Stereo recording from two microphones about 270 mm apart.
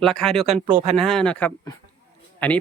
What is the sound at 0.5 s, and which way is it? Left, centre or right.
Speech, right.